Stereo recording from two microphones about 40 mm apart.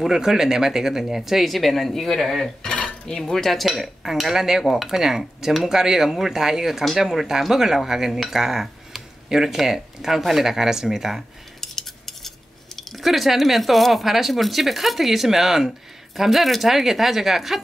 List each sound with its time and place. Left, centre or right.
0.0 s speech: centre
2.7 s cutlery: left
3.2 s cutlery: centre
3.6 s speech: centre
11.6 s cutlery: centre
12.7 s speech: centre